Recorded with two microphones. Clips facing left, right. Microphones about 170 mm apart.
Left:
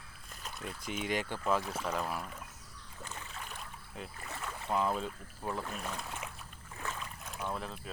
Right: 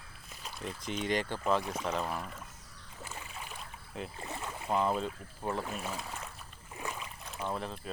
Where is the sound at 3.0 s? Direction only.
10° right (ahead or behind).